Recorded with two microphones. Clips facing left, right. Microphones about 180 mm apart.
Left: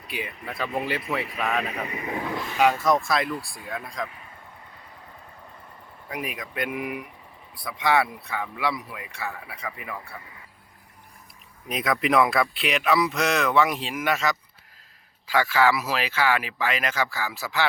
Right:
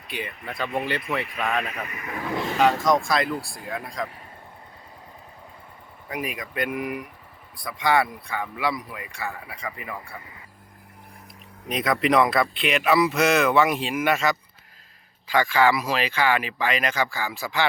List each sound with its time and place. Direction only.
0.1 s speech: 5° left (ahead or behind)
1.7 s speech: 25° left (ahead or behind)
3.1 s speech: centre (ahead or behind)
6.1 s speech: centre (ahead or behind)
11.7 s speech: centre (ahead or behind)